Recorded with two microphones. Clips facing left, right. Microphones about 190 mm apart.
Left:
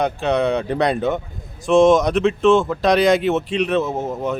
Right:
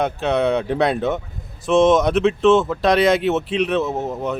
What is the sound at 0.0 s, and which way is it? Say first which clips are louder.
Speech: even; centre (ahead or behind).